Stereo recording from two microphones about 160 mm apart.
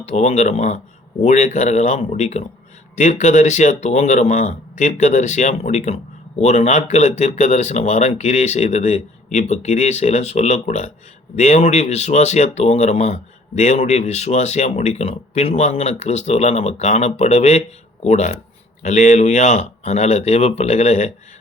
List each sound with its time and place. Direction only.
0.0 s speech: 45° left (ahead or behind)